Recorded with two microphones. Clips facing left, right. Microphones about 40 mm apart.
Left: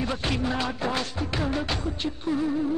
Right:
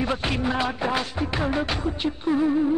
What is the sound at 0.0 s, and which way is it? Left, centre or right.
Music, centre.